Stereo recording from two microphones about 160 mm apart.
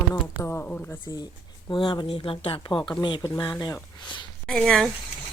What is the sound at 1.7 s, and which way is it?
Speech, 30° left (ahead or behind).